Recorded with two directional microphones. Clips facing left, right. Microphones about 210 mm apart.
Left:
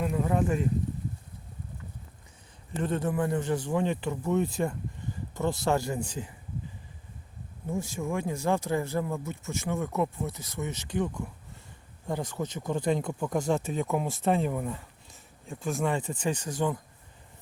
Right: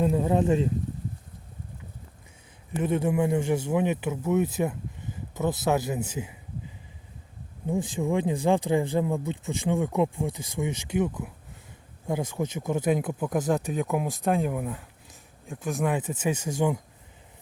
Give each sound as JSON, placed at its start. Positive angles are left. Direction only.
{"t": 0.0, "sound": "speech", "side_deg": -25}
{"t": 2.8, "sound": "speech", "side_deg": -10}
{"t": 7.7, "sound": "speech", "side_deg": -15}